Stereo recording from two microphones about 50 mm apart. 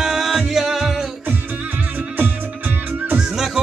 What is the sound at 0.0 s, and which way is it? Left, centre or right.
Music, centre.